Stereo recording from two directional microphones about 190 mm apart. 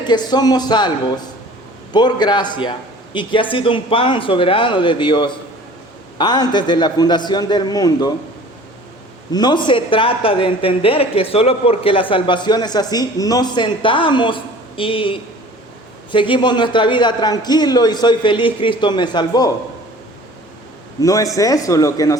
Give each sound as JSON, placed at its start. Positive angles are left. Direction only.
{"t": 0.0, "sound": "speech", "side_deg": 20}
{"t": 9.3, "sound": "speech", "side_deg": 20}
{"t": 21.0, "sound": "a man's voice", "side_deg": 15}